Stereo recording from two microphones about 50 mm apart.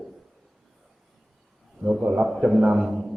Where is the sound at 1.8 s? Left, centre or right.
Centre.